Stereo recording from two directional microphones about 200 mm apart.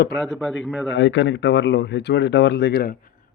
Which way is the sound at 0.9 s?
70° left (ahead or behind).